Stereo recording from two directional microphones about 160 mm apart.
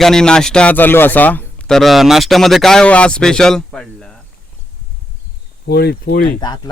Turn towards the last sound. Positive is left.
turn(degrees=70)  # may be behind; listen again after turning